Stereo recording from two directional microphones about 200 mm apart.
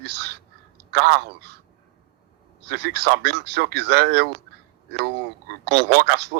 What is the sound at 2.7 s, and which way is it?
Speech, 55° right (ahead or behind).